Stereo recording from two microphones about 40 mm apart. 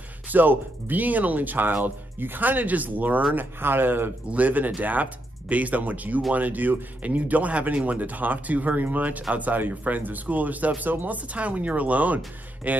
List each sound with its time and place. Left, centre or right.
0.3 s speech: right
3.3 s speech: right
4.3 s speech: right
11.1 s speech: right